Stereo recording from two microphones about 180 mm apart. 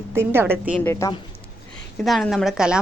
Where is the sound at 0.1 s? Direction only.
15° right (ahead or behind).